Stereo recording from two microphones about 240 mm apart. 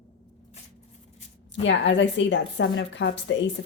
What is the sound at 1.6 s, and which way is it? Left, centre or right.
A woman's voice, left.